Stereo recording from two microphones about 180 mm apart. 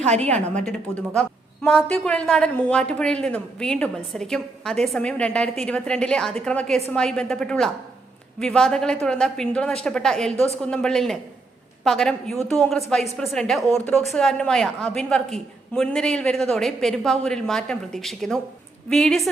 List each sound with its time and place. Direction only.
0.0 s a woman's voice: 40° right (ahead or behind)
0.3 s a woman's voice: 5° left (ahead or behind)